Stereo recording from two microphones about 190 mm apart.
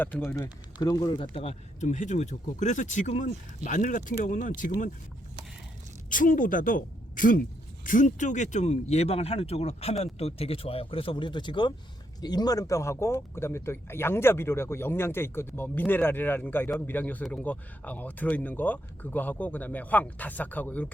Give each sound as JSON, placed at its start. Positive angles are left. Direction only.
{"t": 0.4, "sound": "speech", "side_deg": 20}
{"t": 6.1, "sound": "a woman's voice", "side_deg": 45}